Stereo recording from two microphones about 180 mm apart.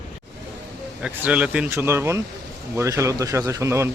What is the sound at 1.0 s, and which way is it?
Speech, 5° right (ahead or behind).